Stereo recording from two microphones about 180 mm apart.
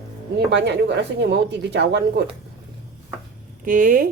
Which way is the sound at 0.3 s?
70° right (ahead or behind).